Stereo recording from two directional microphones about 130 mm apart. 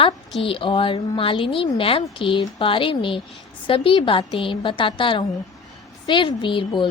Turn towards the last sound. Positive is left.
turn(degrees=40)  # may be behind; listen again after turning